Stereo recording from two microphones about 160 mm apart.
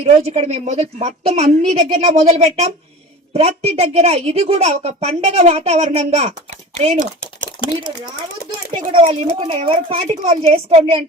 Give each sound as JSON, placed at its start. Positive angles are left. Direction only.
{"t": 0.0, "sound": "a woman's voice", "side_deg": -40}
{"t": 7.6, "sound": "speech", "side_deg": 35}
{"t": 9.0, "sound": "a woman's voice", "side_deg": -30}